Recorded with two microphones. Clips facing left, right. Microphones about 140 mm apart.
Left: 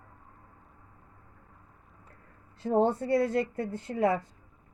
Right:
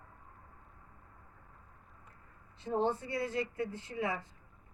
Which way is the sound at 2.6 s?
50° left (ahead or behind).